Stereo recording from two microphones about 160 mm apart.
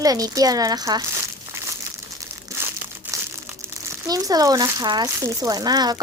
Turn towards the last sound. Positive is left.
turn(degrees=-25)  # may be behind; listen again after turning